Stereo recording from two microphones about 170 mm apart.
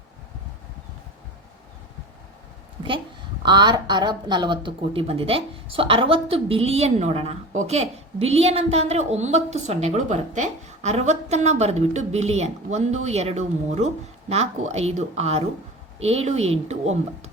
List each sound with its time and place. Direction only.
3.4 s speech: 25° right (ahead or behind); by 17.3 s 40° right (ahead or behind)